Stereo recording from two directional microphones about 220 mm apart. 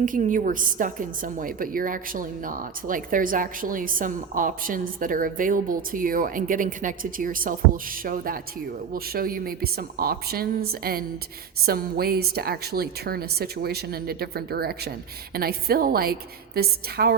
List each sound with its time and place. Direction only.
0.0 s a woman's voice: 35° right (ahead or behind)